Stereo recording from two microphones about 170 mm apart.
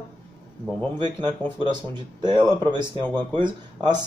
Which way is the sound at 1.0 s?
30° right (ahead or behind).